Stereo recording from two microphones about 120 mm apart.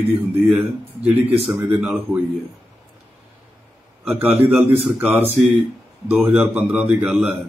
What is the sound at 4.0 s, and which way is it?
A man's voice, 15° right (ahead or behind).